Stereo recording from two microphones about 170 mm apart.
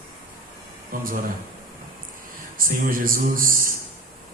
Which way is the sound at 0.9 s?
55° right (ahead or behind).